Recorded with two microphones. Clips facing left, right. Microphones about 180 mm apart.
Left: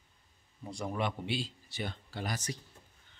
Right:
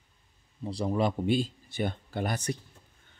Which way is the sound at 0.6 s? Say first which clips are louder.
Right 7 dB; 30° right (ahead or behind).